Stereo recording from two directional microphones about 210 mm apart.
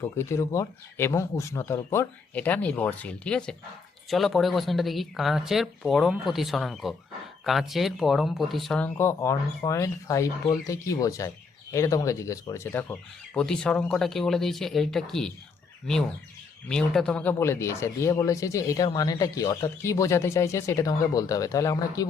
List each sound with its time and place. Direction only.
0.0 s speech: 15° left (ahead or behind)